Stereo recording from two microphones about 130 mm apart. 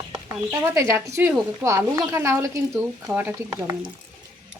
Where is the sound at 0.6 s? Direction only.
25° right (ahead or behind).